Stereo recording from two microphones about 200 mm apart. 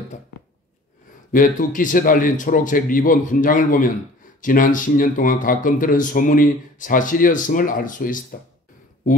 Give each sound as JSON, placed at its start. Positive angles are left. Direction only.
{"t": 1.3, "sound": "a man's voice", "side_deg": 40}